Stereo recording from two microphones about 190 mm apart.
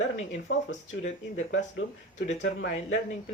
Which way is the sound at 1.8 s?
90° left.